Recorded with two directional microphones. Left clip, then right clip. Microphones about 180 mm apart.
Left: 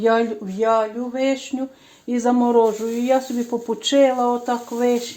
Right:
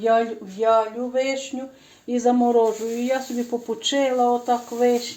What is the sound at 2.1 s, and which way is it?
Speech, 40° left (ahead or behind).